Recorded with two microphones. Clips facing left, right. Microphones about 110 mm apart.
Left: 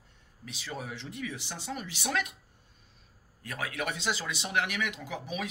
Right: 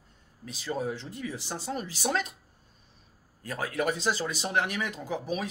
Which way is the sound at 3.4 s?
35° right (ahead or behind).